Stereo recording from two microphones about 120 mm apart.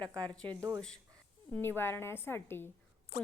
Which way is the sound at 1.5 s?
20° left (ahead or behind).